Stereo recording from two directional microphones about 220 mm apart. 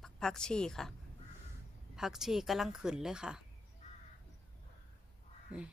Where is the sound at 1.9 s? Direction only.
Centre (ahead or behind).